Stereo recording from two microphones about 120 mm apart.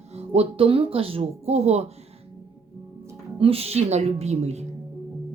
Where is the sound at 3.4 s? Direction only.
55° right (ahead or behind).